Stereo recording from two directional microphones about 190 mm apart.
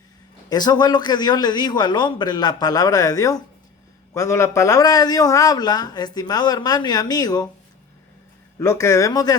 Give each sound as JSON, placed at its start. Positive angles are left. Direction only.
{"t": 0.5, "sound": "a man's voice", "side_deg": 20}
{"t": 8.5, "sound": "speech", "side_deg": 15}